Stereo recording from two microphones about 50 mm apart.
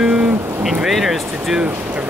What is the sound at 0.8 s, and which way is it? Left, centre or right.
Speech, centre.